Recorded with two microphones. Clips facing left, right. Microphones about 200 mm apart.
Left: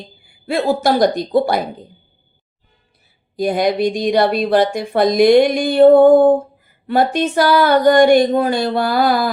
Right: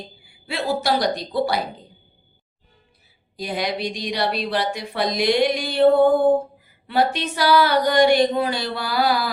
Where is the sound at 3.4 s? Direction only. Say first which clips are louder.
Left 10 dB; 50° left (ahead or behind).